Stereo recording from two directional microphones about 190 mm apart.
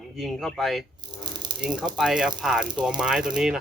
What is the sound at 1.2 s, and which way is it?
Snake, 20° right (ahead or behind).